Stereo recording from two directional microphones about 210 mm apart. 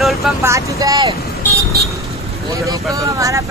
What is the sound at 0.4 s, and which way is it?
Speech, 15° right (ahead or behind).